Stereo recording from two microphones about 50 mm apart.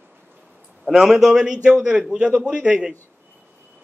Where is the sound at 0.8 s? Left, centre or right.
Centre.